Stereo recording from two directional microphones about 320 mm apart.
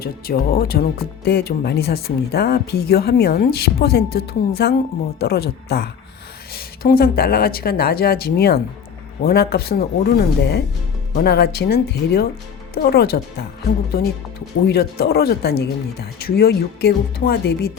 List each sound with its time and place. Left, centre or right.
0.0 s speech: left
14.7 s speech: left